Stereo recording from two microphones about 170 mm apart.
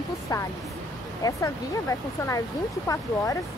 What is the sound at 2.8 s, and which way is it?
Speech, 20° left (ahead or behind).